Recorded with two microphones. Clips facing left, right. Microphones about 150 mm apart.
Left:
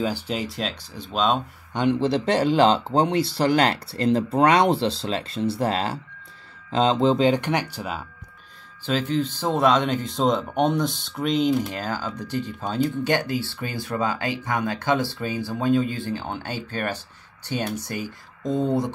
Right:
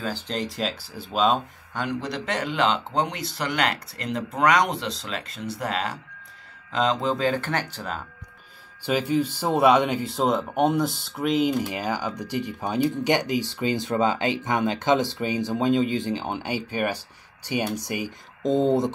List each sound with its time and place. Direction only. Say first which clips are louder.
0.0 s speech: left 3 dB; 10° left (ahead or behind)
1.7 s speech: left 8 dB; 25° left (ahead or behind)
8.8 s speech: right 1 dB; 10° right (ahead or behind)